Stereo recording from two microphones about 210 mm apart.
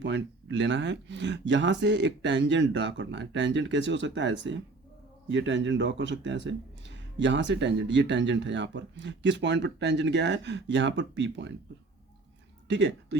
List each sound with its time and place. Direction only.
0.0 s speech: 55° right (ahead or behind)
12.6 s speech: 55° right (ahead or behind)